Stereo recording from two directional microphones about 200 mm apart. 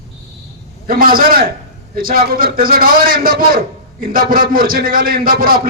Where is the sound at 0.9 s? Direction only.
45° right (ahead or behind).